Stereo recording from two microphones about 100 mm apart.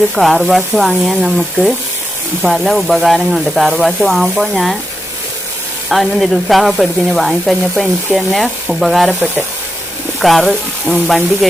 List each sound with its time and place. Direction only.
0.2 s speech: centre (ahead or behind)
5.9 s speech: centre (ahead or behind)